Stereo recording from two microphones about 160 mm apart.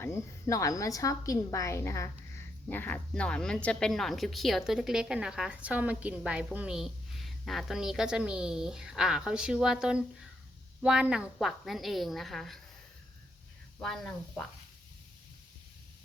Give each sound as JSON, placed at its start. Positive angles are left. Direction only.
{"t": 0.0, "sound": "a woman's voice", "side_deg": 20}
{"t": 13.7, "sound": "a woman's voice", "side_deg": 0}